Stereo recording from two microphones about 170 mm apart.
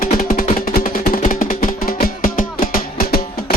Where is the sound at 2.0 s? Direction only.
55° left (ahead or behind).